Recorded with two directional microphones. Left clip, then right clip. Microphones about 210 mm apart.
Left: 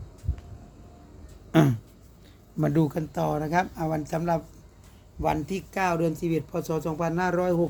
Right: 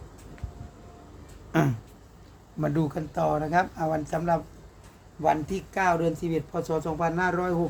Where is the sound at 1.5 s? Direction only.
25° left (ahead or behind).